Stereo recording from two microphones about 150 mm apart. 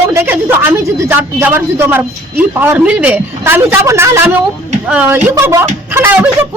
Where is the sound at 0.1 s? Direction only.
15° right (ahead or behind).